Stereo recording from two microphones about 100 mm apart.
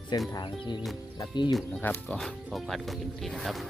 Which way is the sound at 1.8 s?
20° left (ahead or behind).